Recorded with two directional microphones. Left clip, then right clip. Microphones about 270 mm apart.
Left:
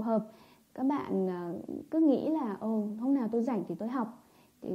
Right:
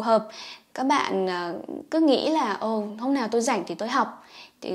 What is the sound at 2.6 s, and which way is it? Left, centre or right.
Speech, right.